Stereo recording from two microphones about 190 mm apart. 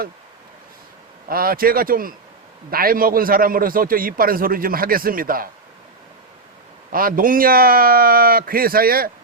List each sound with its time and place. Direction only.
1.3 s a man's voice: 50° right (ahead or behind)
6.9 s a man's voice: 50° right (ahead or behind)